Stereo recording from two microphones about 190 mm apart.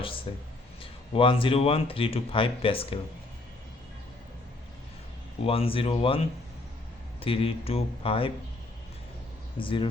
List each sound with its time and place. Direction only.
0.3 s speech: 30° left (ahead or behind)
5.4 s speech: 30° left (ahead or behind)
9.6 s speech: 25° left (ahead or behind)